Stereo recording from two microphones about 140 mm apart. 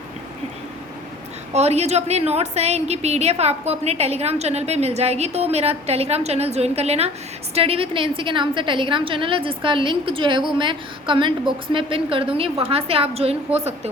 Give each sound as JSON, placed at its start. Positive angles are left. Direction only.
{"t": 1.5, "sound": "a woman's voice", "side_deg": -50}